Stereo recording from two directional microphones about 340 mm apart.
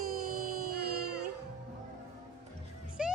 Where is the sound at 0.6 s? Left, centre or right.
Right.